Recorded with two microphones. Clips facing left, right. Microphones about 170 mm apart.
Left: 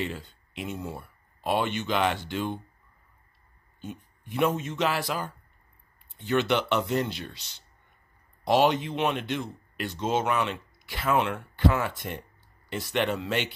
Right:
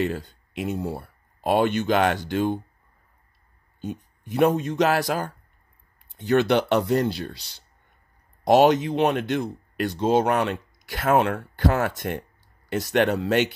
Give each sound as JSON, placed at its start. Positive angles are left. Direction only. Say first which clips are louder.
{"t": 0.0, "sound": "speech", "louder": "right 7 dB", "side_deg": -45}
{"t": 3.8, "sound": "speech", "louder": "right 7 dB", "side_deg": -40}